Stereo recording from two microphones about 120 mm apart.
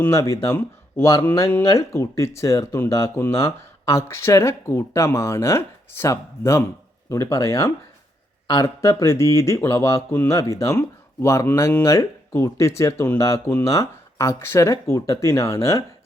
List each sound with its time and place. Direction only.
0.0 s speech: 25° left (ahead or behind)